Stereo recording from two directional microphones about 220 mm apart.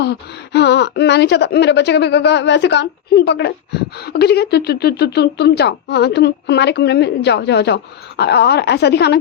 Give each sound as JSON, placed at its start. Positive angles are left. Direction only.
{"t": 0.0, "sound": "speech", "side_deg": 50}